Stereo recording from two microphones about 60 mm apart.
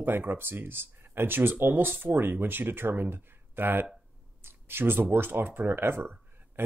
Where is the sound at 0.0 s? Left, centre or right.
Right.